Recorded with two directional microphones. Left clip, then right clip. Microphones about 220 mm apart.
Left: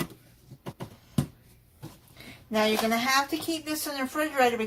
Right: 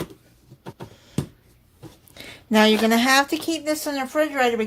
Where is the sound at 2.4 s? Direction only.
45° right (ahead or behind).